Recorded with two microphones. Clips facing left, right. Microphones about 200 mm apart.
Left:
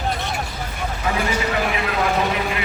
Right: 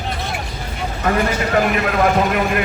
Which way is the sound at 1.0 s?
50° right (ahead or behind).